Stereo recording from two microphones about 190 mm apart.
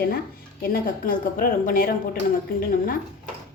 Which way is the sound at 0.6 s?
50° left (ahead or behind).